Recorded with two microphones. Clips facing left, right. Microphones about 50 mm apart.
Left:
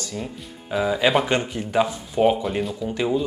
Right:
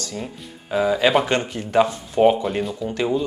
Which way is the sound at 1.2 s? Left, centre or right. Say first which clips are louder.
Right 1 dB; centre.